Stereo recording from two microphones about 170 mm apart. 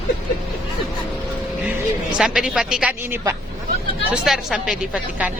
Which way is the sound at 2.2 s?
5° right (ahead or behind).